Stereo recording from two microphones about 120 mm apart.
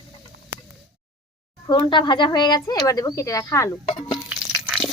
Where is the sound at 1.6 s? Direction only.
40° left (ahead or behind).